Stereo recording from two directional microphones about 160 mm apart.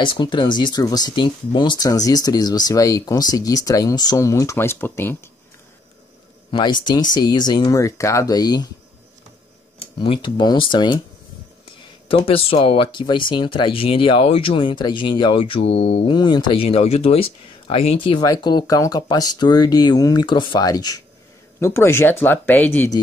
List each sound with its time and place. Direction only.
0.0 s speech: 30° left (ahead or behind); by 5.3 s 15° left (ahead or behind)
6.5 s speech: 30° left (ahead or behind)
9.8 s speech: 35° left (ahead or behind)
12.1 s speech: 35° left (ahead or behind)
16.2 s speech: 30° left (ahead or behind); by 22.8 s 10° left (ahead or behind)